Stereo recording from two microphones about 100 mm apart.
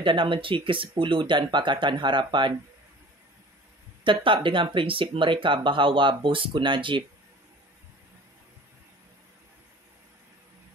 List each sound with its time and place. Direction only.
0.0 s speech: 55° right (ahead or behind)
4.0 s speech: 60° right (ahead or behind)